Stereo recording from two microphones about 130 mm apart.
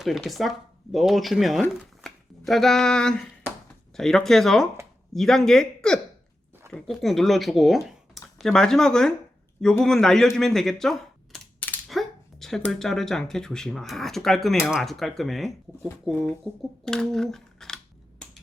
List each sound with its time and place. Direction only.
0.0 s speech: centre (ahead or behind)
16.4 s speech: 15° right (ahead or behind)
16.8 s speech: 5° left (ahead or behind)